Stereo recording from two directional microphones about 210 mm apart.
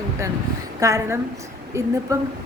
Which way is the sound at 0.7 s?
15° right (ahead or behind).